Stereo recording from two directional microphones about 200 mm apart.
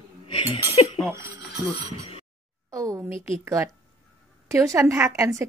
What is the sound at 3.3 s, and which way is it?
Speech, 15° right (ahead or behind).